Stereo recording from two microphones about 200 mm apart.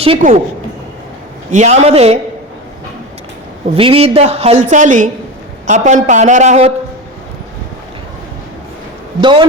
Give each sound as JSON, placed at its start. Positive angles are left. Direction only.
{"t": 0.0, "sound": "speech", "side_deg": -35}
{"t": 1.5, "sound": "speech", "side_deg": -35}
{"t": 3.8, "sound": "speech", "side_deg": -30}
{"t": 9.2, "sound": "a man's voice", "side_deg": -25}